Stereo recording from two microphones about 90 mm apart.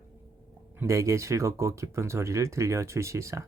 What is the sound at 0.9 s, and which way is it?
Speech, 35° right (ahead or behind).